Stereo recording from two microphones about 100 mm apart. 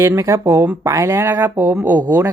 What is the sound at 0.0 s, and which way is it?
A woman's voice, 30° right (ahead or behind).